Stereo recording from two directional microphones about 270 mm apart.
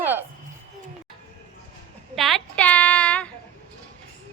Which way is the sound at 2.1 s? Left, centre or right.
Centre.